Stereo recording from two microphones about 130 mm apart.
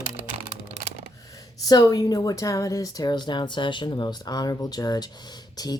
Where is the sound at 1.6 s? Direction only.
30° left (ahead or behind).